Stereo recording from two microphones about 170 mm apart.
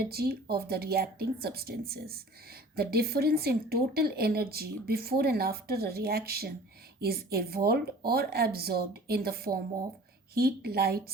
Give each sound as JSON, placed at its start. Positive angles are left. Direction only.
{"t": 0.0, "sound": "a woman's voice", "side_deg": -65}